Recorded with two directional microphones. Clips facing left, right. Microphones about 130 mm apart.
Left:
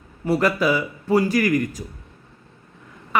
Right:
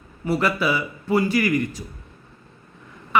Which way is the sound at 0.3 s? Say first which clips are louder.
Left 2 dB; 45° left (ahead or behind).